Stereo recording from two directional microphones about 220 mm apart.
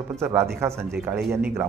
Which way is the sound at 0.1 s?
10° right (ahead or behind).